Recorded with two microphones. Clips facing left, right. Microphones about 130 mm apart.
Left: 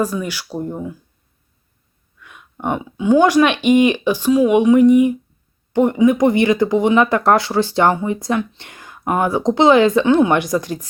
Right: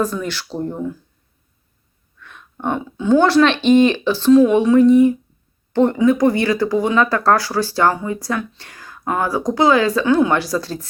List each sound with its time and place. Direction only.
0.0 s speech: 10° left (ahead or behind)
2.1 s speech: 10° left (ahead or behind)